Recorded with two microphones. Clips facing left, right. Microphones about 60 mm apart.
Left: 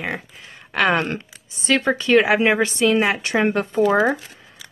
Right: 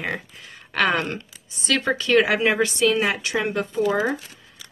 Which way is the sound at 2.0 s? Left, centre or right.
Left.